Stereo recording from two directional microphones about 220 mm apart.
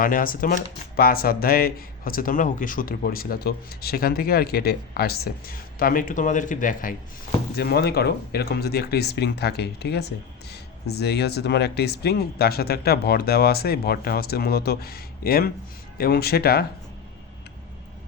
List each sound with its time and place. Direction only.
0.0 s speech: 40° left (ahead or behind)